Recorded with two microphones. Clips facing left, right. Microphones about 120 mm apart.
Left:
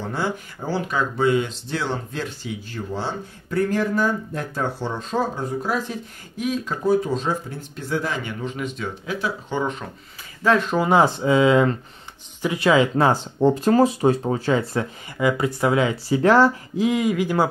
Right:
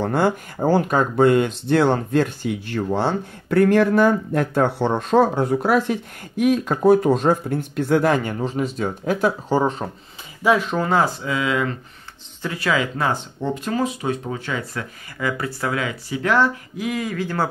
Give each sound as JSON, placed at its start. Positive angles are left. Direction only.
{"t": 0.0, "sound": "speech", "side_deg": -55}
{"t": 10.4, "sound": "speech", "side_deg": -10}
{"t": 10.9, "sound": "speech", "side_deg": 20}
{"t": 12.9, "sound": "speech", "side_deg": 35}